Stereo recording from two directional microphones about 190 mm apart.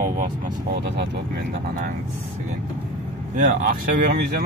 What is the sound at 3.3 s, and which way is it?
Speech, 45° right (ahead or behind).